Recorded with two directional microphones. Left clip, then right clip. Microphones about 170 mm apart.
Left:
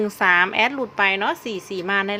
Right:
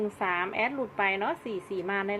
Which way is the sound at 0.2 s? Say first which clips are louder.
Left 13 dB; 45° left (ahead or behind).